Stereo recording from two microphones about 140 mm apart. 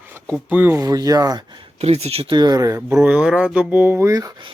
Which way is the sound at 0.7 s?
25° right (ahead or behind).